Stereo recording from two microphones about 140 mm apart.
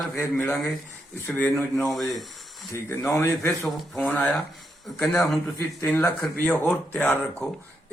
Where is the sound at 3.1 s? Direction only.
20° left (ahead or behind).